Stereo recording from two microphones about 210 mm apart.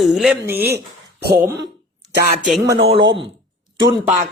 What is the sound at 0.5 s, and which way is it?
Speech, 50° right (ahead or behind).